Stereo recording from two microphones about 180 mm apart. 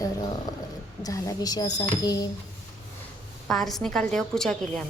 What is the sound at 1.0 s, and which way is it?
A woman's voice, 20° left (ahead or behind).